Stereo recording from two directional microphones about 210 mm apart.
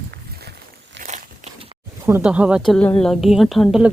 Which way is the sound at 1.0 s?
35° right (ahead or behind).